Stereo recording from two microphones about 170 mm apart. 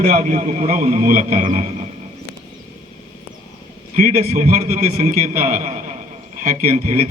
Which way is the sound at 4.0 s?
40° right (ahead or behind).